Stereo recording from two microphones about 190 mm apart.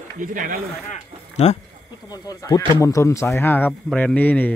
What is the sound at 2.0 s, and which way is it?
Speech, 20° left (ahead or behind).